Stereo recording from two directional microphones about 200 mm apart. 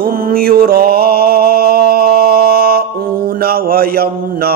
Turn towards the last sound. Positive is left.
turn(degrees=-50)  # may be behind; listen again after turning